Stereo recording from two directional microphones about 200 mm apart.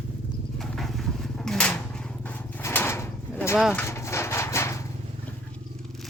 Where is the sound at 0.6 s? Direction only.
Centre (ahead or behind).